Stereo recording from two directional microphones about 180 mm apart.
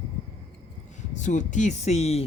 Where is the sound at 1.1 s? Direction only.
45° left (ahead or behind).